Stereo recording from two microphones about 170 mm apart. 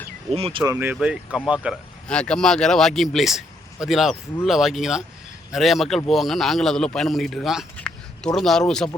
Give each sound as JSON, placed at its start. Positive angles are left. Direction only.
{"t": 0.3, "sound": "speech", "side_deg": -35}
{"t": 0.6, "sound": "a man's voice", "side_deg": -15}